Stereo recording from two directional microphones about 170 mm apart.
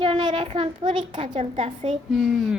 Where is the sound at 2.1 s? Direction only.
Centre (ahead or behind).